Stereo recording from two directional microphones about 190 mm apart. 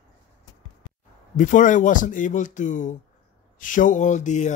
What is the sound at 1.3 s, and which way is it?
Speech, 45° left (ahead or behind).